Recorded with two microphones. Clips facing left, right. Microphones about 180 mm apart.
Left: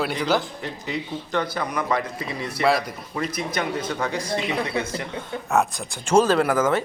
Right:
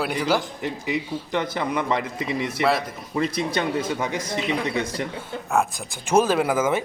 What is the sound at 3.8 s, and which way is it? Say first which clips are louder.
Speech: even; 10° right (ahead or behind).